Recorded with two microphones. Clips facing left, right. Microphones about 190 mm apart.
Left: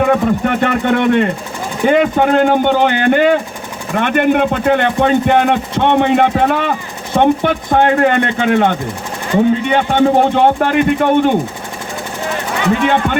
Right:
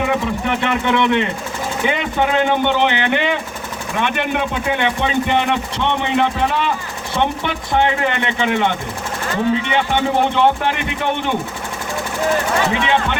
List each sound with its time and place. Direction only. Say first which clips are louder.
0.0 s speech: left 6 dB; 50° left (ahead or behind)
12.8 s speech: left 4 dB; 50° left (ahead or behind)